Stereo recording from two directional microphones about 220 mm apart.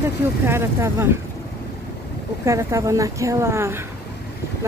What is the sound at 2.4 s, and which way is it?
Speech, 15° right (ahead or behind).